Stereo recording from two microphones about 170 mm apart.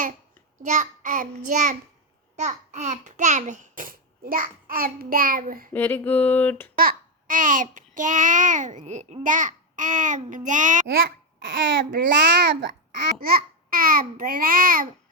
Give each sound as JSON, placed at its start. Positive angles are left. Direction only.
{"t": 0.6, "sound": "babbling", "side_deg": -50}
{"t": 2.3, "sound": "a child's voice", "side_deg": -45}
{"t": 5.7, "sound": "a sound", "side_deg": 10}
{"t": 6.7, "sound": "babbling", "side_deg": -55}
{"t": 11.8, "sound": "a child's voice", "side_deg": -90}
{"t": 13.2, "sound": "a child's voice", "side_deg": -60}